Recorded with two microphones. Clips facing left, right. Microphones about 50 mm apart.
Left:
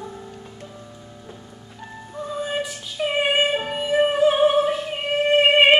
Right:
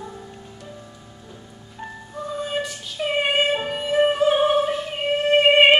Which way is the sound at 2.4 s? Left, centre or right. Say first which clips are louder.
Left 1 dB; centre.